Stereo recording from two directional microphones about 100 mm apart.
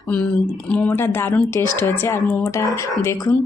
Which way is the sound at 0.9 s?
25° left (ahead or behind).